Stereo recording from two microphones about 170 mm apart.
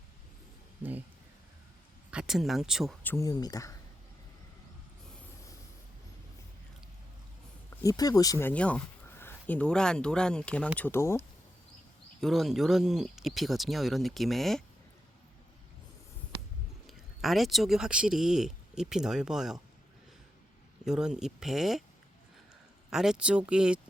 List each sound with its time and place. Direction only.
0.8 s speech: 10° right (ahead or behind)
2.0 s speech: 5° right (ahead or behind)
3.0 s speech: 10° left (ahead or behind)
3.2 s speech: 20° left (ahead or behind)
7.9 s speech: 20° left (ahead or behind)
12.2 s speech: centre (ahead or behind)
16.8 s speech: centre (ahead or behind)
20.8 s speech: 5° right (ahead or behind)
22.9 s speech: 5° right (ahead or behind)